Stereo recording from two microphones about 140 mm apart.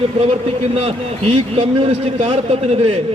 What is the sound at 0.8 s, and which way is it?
A man's voice, 40° right (ahead or behind).